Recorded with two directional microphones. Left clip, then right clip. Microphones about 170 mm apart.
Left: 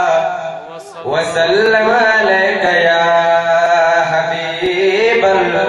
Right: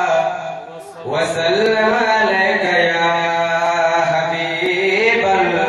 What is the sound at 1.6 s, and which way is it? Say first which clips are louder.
Speech: left 3 dB; 25° right (ahead or behind).